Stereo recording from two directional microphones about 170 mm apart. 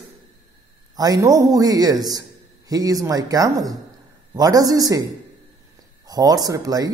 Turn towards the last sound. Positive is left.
turn(degrees=-20)  # may be behind; listen again after turning